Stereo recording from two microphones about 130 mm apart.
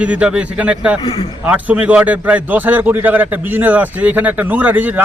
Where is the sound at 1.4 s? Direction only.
10° right (ahead or behind).